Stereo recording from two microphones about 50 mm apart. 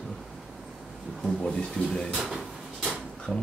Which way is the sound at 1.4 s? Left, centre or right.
Centre.